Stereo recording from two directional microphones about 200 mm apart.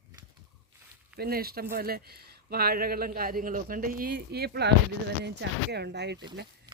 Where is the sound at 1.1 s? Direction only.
50° right (ahead or behind).